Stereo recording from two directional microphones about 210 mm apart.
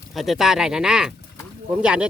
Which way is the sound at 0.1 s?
Centre (ahead or behind).